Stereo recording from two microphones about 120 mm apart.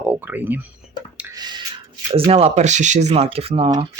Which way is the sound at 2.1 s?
55° right (ahead or behind).